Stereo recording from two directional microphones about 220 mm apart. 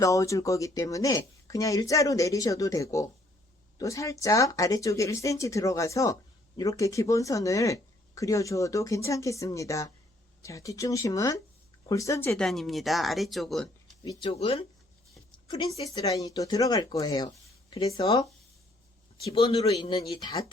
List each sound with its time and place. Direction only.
0.0 s speech: 15° left (ahead or behind)
14.0 s a man's voice: 20° left (ahead or behind)